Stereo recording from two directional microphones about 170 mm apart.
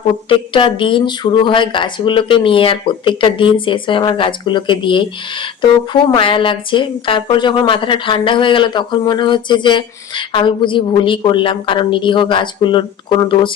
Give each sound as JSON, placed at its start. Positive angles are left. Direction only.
{"t": 0.3, "sound": "speech", "side_deg": 30}